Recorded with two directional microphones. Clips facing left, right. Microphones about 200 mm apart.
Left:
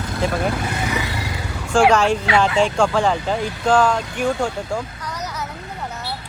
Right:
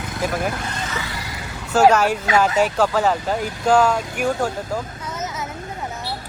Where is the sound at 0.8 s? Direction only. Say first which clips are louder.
Left 5 dB; 15° left (ahead or behind).